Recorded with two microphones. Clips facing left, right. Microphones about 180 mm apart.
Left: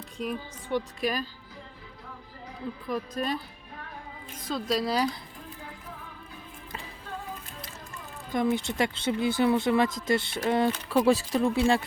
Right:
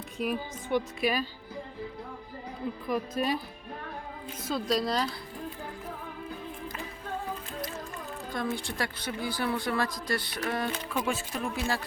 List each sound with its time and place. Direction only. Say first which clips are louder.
0.2 s speech: right 2 dB; 10° right (ahead or behind)
2.9 s speech: right 1 dB; 10° right (ahead or behind)
4.4 s a woman's voice: even; centre (ahead or behind)
8.3 s speech: left 7 dB; 20° left (ahead or behind)
10.8 s speech: left 9 dB; 35° left (ahead or behind)